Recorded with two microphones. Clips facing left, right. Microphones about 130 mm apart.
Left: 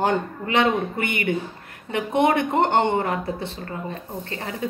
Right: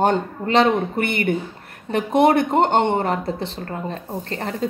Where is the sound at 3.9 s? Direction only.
35° right (ahead or behind).